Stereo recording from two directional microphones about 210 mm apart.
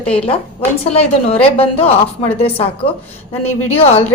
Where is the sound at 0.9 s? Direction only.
30° left (ahead or behind).